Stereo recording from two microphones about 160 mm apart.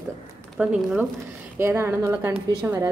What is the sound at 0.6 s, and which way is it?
Speech, 5° right (ahead or behind).